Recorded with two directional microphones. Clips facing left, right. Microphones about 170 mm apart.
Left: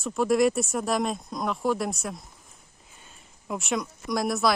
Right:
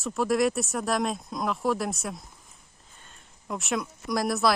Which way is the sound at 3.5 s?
Centre (ahead or behind).